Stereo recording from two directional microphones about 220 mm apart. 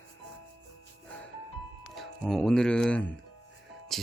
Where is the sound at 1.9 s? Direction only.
Centre (ahead or behind).